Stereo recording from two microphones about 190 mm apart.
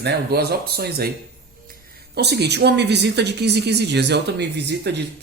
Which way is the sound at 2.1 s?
60° right (ahead or behind).